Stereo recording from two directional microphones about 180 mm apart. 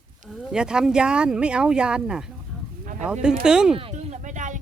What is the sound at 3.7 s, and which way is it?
Music, 35° right (ahead or behind).